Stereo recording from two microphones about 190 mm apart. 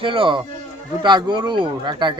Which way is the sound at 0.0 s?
25° right (ahead or behind).